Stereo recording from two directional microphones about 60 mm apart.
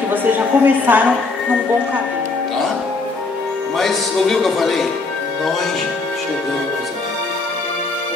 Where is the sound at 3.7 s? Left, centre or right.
Centre.